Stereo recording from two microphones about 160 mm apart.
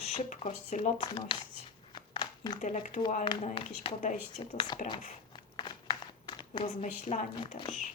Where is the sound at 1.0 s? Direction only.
30° left (ahead or behind).